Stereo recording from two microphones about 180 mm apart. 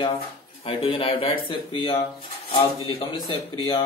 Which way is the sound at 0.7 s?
30° left (ahead or behind).